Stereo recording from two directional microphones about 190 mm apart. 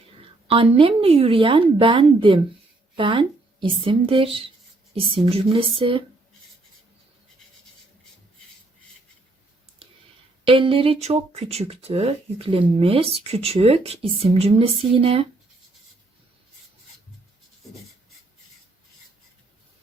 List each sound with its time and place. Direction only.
0.2 s a woman's voice: 30° right (ahead or behind)
10.4 s speech: 30° right (ahead or behind)